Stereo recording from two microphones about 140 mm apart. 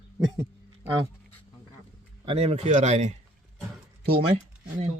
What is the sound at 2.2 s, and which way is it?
Speech, 45° right (ahead or behind).